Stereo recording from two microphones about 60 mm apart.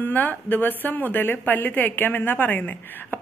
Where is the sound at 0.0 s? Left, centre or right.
Left.